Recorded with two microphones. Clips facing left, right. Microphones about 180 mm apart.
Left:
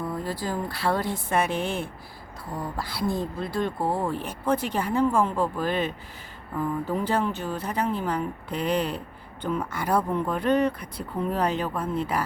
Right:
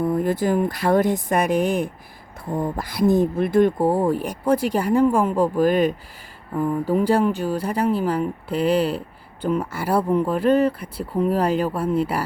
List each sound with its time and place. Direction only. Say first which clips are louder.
0.0 s speech: right 9 dB; 20° right (ahead or behind)
6.6 s speech: right 7 dB; 10° right (ahead or behind)